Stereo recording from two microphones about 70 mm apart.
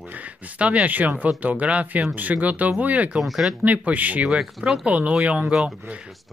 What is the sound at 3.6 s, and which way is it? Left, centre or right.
Speech, right.